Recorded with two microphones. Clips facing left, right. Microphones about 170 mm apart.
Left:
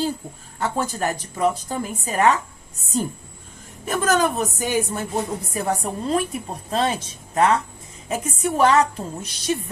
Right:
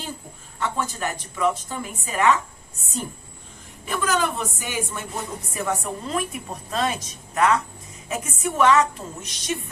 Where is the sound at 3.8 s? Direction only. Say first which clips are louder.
Left 4 dB; 45° left (ahead or behind).